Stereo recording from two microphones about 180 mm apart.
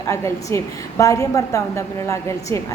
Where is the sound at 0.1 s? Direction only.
15° left (ahead or behind).